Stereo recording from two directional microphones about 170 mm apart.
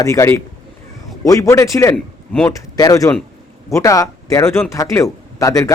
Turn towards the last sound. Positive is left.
turn(degrees=20)  # may be behind; listen again after turning